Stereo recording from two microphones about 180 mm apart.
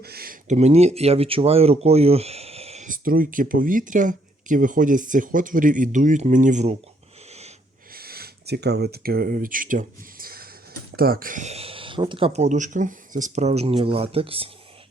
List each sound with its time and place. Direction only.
0.0 s a sound: 60° right (ahead or behind)
0.4 s speech: 40° right (ahead or behind)
7.9 s speech: 60° right (ahead or behind); by 14.5 s 30° right (ahead or behind)